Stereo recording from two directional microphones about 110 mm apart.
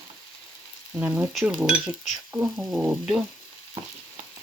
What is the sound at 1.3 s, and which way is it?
Speech, centre (ahead or behind).